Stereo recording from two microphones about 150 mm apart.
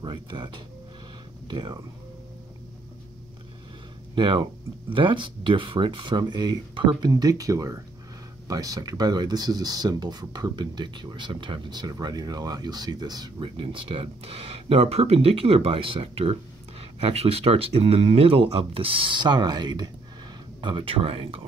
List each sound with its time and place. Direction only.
0.0 s speech: 30° right (ahead or behind)
4.1 s speech: 35° right (ahead or behind)